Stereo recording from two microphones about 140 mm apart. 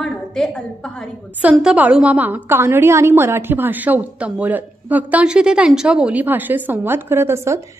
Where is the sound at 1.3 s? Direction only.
10° right (ahead or behind).